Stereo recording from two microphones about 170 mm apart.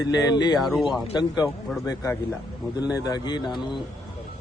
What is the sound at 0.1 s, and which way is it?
Speech, 25° left (ahead or behind).